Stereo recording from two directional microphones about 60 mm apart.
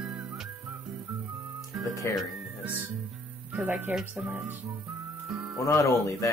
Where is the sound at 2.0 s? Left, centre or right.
Left.